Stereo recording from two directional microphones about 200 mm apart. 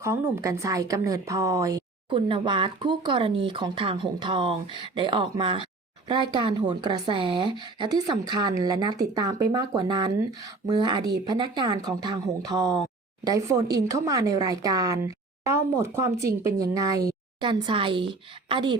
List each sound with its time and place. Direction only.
0.0 s a woman's voice: 15° right (ahead or behind)